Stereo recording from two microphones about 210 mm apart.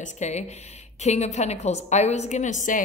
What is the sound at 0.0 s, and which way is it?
A woman's voice, 35° left (ahead or behind).